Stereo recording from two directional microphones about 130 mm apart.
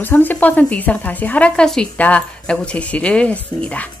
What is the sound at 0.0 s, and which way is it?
Speech, 15° left (ahead or behind).